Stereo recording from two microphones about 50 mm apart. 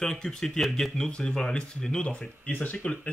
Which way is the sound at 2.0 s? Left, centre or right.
Left.